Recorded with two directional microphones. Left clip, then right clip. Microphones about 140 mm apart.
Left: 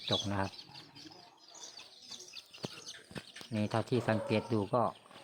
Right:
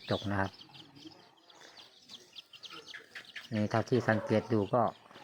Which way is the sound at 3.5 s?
20° right (ahead or behind).